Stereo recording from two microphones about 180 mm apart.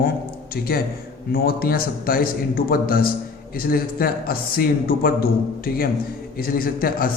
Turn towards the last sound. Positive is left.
turn(degrees=55)  # may be behind; listen again after turning